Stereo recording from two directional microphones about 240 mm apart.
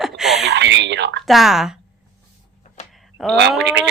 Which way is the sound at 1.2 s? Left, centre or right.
Centre.